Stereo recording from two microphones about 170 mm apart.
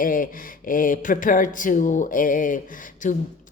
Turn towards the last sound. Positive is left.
turn(degrees=50)  # may be behind; listen again after turning